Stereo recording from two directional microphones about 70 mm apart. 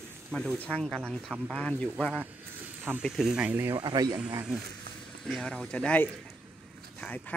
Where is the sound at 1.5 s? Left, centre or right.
Centre.